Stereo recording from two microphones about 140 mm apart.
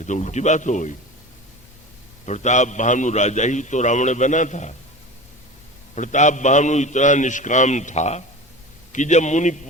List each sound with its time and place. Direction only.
0.0 s a man's voice: 55° left (ahead or behind)
2.2 s a man's voice: 55° left (ahead or behind)
5.9 s a man's voice: 60° left (ahead or behind)